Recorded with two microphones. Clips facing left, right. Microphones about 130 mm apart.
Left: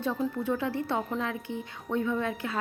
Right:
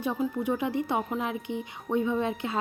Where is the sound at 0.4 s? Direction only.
15° right (ahead or behind).